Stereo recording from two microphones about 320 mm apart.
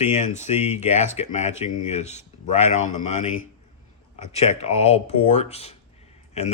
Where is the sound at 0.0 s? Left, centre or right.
Left.